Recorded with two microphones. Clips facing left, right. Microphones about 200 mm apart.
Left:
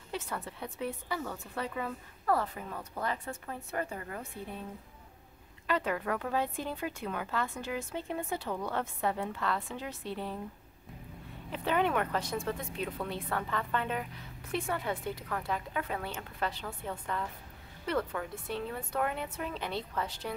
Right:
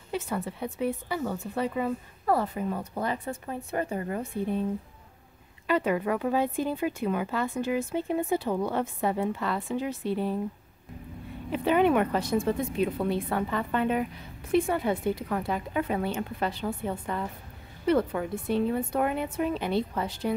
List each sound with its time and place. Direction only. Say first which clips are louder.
0.1 s speech: right 7 dB; 10° right (ahead or behind)
5.7 s speech: right 6 dB; 10° right (ahead or behind)
11.5 s speech: right 7 dB; 15° right (ahead or behind)